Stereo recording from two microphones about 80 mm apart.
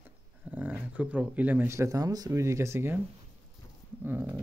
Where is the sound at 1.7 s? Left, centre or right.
Right.